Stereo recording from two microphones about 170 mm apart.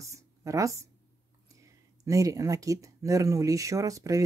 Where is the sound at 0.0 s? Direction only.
20° right (ahead or behind).